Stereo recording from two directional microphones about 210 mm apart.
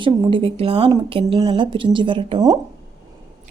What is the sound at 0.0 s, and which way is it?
Speech, 25° right (ahead or behind).